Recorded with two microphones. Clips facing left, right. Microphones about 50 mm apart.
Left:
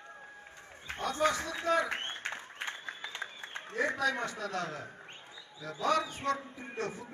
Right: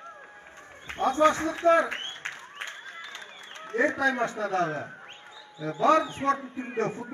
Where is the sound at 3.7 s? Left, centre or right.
Right.